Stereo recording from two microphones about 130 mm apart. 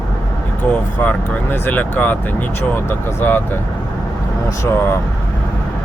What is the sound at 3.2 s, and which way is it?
Speech, 15° left (ahead or behind).